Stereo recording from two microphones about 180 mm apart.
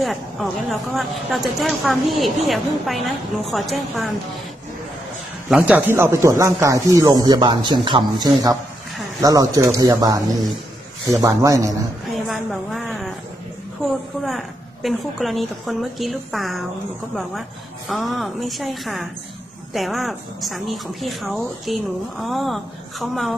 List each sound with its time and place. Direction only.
0.0 s speech: centre (ahead or behind)
5.5 s a man's voice: 5° right (ahead or behind)
12.1 s a sound: centre (ahead or behind)
14.2 s speech: centre (ahead or behind)